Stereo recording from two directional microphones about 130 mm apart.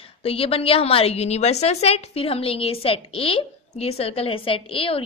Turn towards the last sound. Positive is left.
turn(degrees=45)  # may be behind; listen again after turning